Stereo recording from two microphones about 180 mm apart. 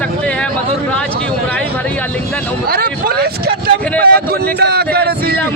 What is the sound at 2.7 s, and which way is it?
Speech, 55° right (ahead or behind).